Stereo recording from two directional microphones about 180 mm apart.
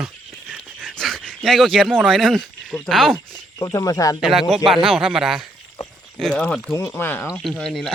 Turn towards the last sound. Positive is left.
turn(degrees=0)  # may be behind; listen again after turning